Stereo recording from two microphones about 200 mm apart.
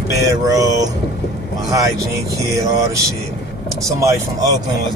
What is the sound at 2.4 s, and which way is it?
Speech, 15° right (ahead or behind).